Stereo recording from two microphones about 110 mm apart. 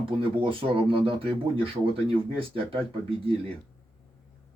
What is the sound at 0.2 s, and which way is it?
Speech, 55° right (ahead or behind).